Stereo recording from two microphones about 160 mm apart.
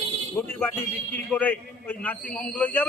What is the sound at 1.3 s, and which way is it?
Speech, 10° left (ahead or behind).